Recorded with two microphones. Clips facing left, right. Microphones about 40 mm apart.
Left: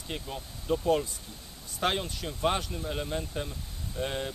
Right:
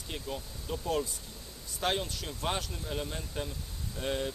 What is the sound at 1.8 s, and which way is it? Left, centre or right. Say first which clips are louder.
Speech: left 2 dB; centre.